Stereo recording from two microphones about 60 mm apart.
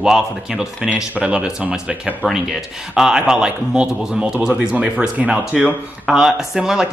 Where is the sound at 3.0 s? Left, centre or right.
Centre.